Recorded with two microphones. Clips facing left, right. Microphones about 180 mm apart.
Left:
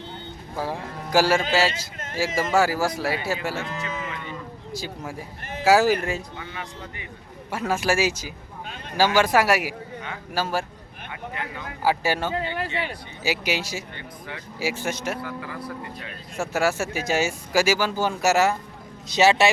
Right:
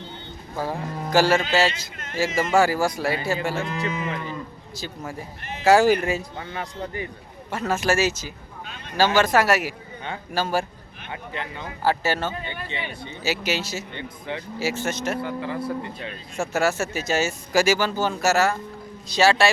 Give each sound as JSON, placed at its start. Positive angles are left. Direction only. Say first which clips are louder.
{"t": 0.5, "sound": "speech", "louder": "right 2 dB", "side_deg": 10}
{"t": 3.6, "sound": "speech", "louder": "right 4 dB", "side_deg": -35}
{"t": 4.7, "sound": "speech", "louder": "left 1 dB", "side_deg": 10}
{"t": 6.3, "sound": "speech", "louder": "right 4 dB", "side_deg": -40}
{"t": 7.5, "sound": "speech", "louder": "right 1 dB", "side_deg": 10}
{"t": 8.6, "sound": "a sound", "louder": "left 2 dB", "side_deg": 50}
{"t": 9.0, "sound": "speech", "louder": "even", "side_deg": 10}
{"t": 11.1, "sound": "speech", "louder": "right 1 dB", "side_deg": -30}
{"t": 11.8, "sound": "speech", "louder": "even", "side_deg": 10}
{"t": 13.9, "sound": "speech", "louder": "right 6 dB", "side_deg": -25}
{"t": 14.6, "sound": "speech", "louder": "even", "side_deg": 10}
{"t": 15.2, "sound": "speech", "louder": "right 5 dB", "side_deg": -25}
{"t": 16.4, "sound": "speech", "louder": "right 1 dB", "side_deg": 10}